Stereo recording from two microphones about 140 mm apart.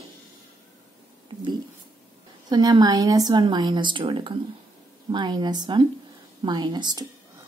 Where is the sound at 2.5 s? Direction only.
30° right (ahead or behind).